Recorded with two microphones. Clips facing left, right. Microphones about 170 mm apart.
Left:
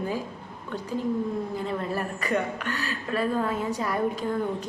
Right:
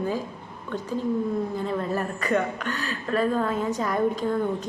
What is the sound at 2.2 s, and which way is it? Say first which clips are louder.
A woman's voice: right 2 dB; 10° left (ahead or behind).